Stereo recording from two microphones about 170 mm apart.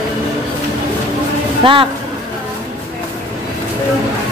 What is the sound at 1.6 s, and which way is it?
Speech, 30° right (ahead or behind).